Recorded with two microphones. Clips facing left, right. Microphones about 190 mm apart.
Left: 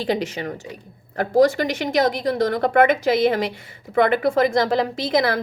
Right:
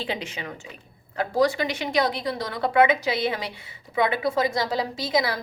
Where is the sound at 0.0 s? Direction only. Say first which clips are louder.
Left 8 dB; 40° left (ahead or behind).